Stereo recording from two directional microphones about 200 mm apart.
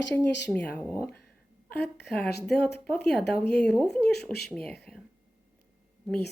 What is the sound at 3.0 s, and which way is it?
Speech, 55° left (ahead or behind).